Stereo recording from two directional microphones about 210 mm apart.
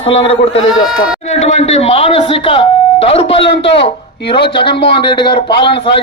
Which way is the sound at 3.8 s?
55° left (ahead or behind).